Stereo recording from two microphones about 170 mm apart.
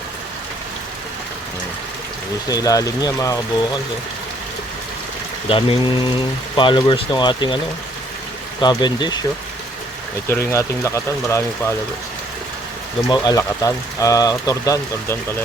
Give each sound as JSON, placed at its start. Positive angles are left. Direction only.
{"t": 2.5, "sound": "speech", "side_deg": 20}
{"t": 5.5, "sound": "speech", "side_deg": 30}
{"t": 8.6, "sound": "speech", "side_deg": 25}
{"t": 10.2, "sound": "speech", "side_deg": 15}
{"t": 13.1, "sound": "speech", "side_deg": 20}